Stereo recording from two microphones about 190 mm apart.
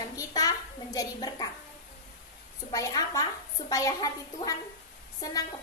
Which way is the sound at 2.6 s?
20° left (ahead or behind).